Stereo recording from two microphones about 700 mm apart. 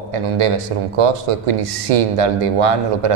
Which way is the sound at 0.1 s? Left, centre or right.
Right.